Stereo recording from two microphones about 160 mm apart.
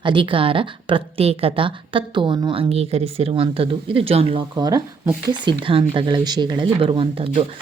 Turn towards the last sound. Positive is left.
turn(degrees=-35)  # may be behind; listen again after turning